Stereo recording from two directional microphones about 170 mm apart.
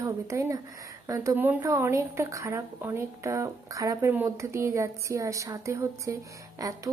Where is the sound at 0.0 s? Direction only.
15° right (ahead or behind).